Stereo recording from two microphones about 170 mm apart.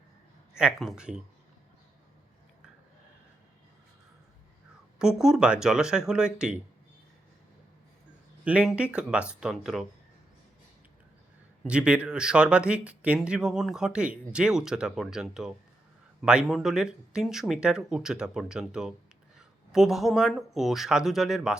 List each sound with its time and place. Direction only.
0.5 s speech: 5° right (ahead or behind)
4.9 s speech: 5° right (ahead or behind)
8.4 s speech: 10° right (ahead or behind)
11.6 s speech: 5° right (ahead or behind)